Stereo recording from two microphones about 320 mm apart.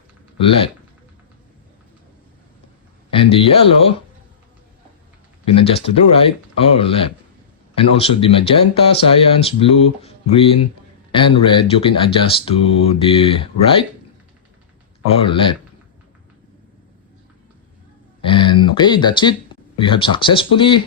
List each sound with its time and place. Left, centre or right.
0.3 s speech: centre
3.1 s a sound: centre
5.5 s speech: centre
15.0 s speech: centre
18.2 s speech: centre